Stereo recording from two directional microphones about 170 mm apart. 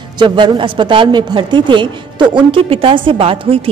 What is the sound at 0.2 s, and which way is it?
Speech, 30° right (ahead or behind).